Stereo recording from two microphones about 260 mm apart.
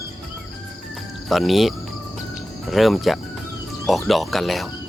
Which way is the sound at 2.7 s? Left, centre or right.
Centre.